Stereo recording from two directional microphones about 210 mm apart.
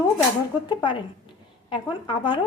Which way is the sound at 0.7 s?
20° left (ahead or behind).